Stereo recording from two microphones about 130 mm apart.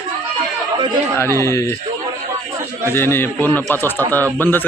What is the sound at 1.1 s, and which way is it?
Speech, 20° left (ahead or behind).